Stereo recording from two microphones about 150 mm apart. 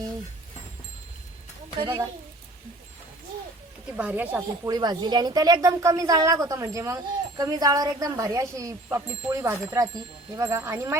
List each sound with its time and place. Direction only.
3.9 s speech: 10° right (ahead or behind)